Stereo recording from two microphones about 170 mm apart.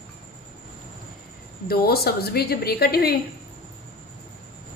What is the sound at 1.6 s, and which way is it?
A woman's voice, 65° left (ahead or behind).